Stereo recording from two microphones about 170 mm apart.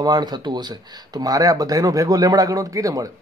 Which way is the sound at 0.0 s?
25° right (ahead or behind).